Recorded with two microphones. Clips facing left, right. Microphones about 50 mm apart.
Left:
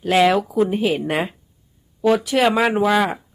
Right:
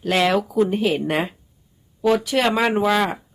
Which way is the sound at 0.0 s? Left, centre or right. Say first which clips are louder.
Left 3 dB; centre.